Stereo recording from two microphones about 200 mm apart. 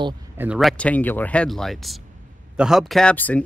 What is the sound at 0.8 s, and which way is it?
Speech, 10° left (ahead or behind).